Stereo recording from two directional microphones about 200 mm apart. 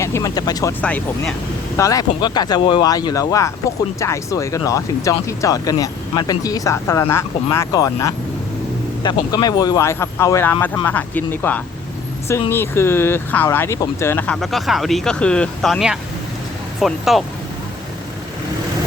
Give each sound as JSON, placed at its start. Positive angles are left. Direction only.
{"t": 0.0, "sound": "speech", "side_deg": 15}
{"t": 0.8, "sound": "speech", "side_deg": 5}
{"t": 1.8, "sound": "speech", "side_deg": 15}